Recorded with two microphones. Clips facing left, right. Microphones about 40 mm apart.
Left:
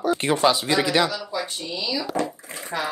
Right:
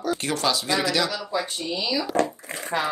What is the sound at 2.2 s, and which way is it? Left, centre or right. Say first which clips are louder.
Speech: right 3 dB; right.